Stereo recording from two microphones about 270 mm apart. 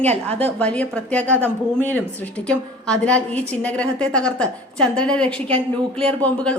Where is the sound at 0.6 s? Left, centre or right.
Centre.